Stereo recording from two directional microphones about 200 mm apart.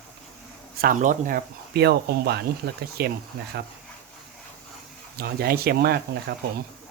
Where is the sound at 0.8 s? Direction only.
40° right (ahead or behind).